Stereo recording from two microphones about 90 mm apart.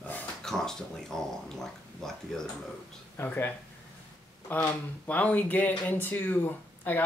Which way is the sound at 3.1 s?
20° left (ahead or behind).